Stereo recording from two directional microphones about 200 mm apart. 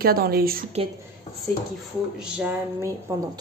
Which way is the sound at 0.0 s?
50° right (ahead or behind).